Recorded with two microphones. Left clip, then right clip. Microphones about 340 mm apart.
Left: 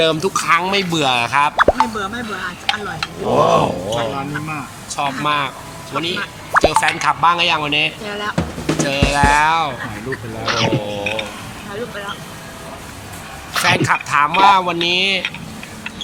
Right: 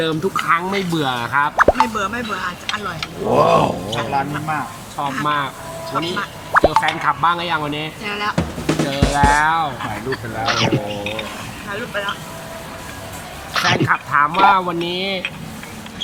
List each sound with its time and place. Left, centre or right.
0.0 s speech: centre
4.9 s speech: centre
10.4 s a sound: centre
13.5 s speech: centre